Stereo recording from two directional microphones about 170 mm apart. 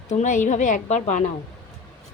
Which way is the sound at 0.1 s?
45° left (ahead or behind).